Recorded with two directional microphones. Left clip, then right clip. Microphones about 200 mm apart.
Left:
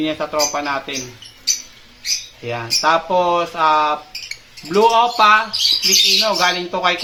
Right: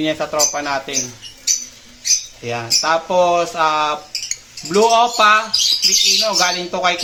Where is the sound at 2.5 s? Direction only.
10° right (ahead or behind).